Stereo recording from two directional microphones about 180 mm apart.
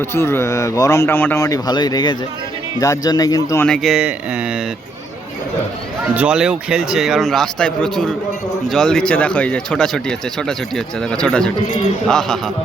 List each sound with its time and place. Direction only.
0.0 s a man's voice: 15° left (ahead or behind)
3.7 s speech: centre (ahead or behind)
6.1 s speech: 5° right (ahead or behind)